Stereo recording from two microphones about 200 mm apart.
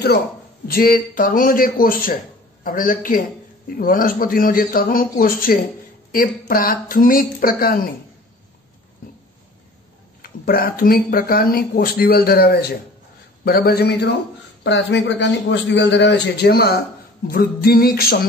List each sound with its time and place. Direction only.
0.7 s speech: 45° left (ahead or behind)
10.2 s a man's voice: 45° left (ahead or behind)